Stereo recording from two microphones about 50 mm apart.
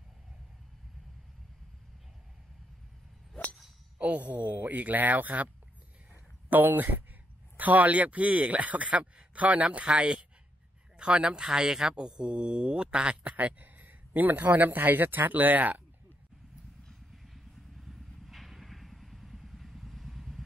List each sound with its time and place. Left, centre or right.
4.0 s speech: right
6.5 s speech: right
17.1 s vehicle: centre